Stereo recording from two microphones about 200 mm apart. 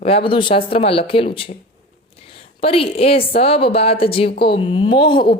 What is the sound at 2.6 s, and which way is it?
A woman's voice, 30° left (ahead or behind).